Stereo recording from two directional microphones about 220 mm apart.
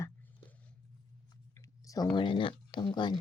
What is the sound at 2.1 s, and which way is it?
Speech, 25° left (ahead or behind).